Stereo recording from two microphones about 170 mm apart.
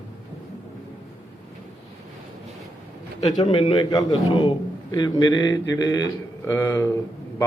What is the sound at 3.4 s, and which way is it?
A man's voice, 30° left (ahead or behind).